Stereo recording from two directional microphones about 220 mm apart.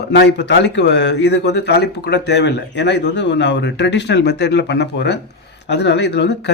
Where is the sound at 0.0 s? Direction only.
50° left (ahead or behind).